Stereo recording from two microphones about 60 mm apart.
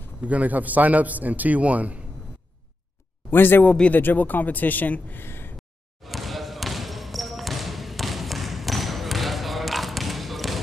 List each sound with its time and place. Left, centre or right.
0.2 s a man's voice: right
3.3 s speech: left
3.6 s speech: centre
3.9 s speech: left
5.2 s a sound: left
6.0 s basketball bounce: centre